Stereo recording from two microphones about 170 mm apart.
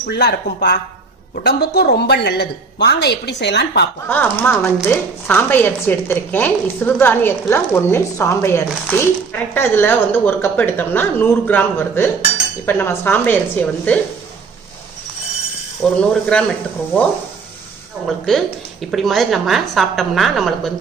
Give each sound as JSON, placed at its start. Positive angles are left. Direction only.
{"t": 0.0, "sound": "a woman's voice", "side_deg": 75}
{"t": 4.1, "sound": "speech", "side_deg": 10}
{"t": 15.8, "sound": "speech", "side_deg": 5}
{"t": 18.2, "sound": "a woman's voice", "side_deg": 0}